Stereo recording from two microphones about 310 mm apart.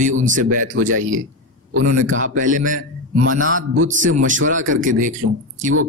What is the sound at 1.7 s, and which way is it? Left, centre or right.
Speech, right.